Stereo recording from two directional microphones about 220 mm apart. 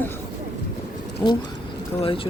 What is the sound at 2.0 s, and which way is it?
Speech, 25° left (ahead or behind).